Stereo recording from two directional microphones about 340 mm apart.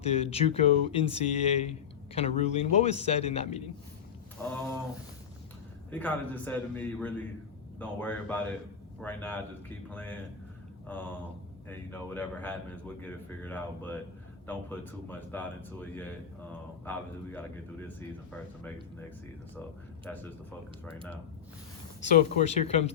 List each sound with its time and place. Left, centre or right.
0.0 s speech: centre
5.9 s speech: centre
20.1 s speech: centre
22.1 s speech: left